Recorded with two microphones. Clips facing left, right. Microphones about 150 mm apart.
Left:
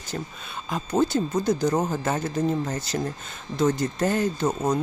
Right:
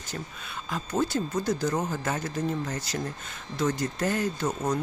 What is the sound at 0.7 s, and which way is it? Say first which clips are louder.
Speech: left 5 dB; 20° left (ahead or behind).